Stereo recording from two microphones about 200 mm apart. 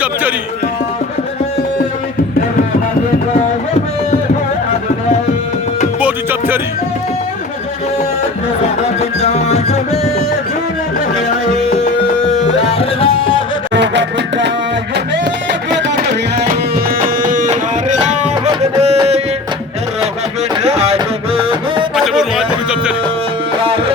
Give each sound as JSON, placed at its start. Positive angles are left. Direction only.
{"t": 0.0, "sound": "a man's voice", "side_deg": -10}
{"t": 6.0, "sound": "music", "side_deg": -5}
{"t": 9.0, "sound": "music", "side_deg": 30}
{"t": 12.5, "sound": "music", "side_deg": 30}
{"t": 13.7, "sound": "music", "side_deg": -60}
{"t": 17.2, "sound": "music", "side_deg": -40}
{"t": 20.6, "sound": "music", "side_deg": -30}
{"t": 21.9, "sound": "a sound", "side_deg": 0}